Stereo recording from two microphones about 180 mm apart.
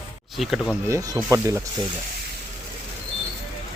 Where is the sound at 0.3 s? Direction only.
Centre (ahead or behind).